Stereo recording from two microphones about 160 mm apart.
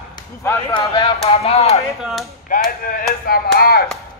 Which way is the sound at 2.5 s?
65° left (ahead or behind).